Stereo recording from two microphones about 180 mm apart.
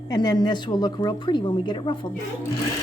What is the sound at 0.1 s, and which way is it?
A woman's voice, 20° left (ahead or behind).